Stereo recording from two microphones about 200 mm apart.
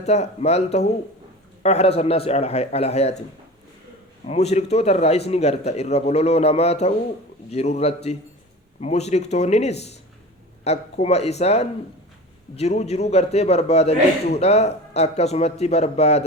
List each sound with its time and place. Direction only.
0.0 s speech: 35° left (ahead or behind)
4.3 s speech: 35° left (ahead or behind)